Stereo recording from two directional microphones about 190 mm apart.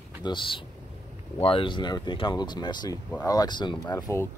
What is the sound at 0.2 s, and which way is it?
Speech, 25° left (ahead or behind).